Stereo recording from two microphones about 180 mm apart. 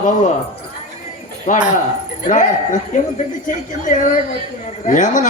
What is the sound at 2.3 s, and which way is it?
A man's voice, 45° left (ahead or behind).